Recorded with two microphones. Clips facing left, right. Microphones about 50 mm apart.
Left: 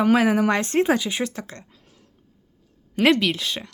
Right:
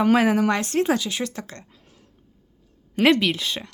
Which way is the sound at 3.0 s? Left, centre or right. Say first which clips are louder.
Even; centre.